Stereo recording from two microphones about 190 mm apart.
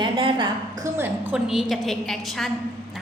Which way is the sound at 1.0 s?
5° right (ahead or behind).